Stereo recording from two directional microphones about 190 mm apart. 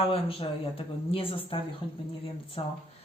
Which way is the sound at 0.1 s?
30° left (ahead or behind).